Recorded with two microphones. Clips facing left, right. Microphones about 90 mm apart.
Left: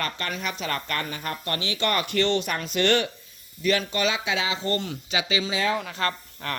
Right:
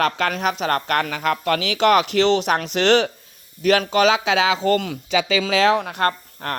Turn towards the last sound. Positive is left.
turn(degrees=-50)  # may be behind; listen again after turning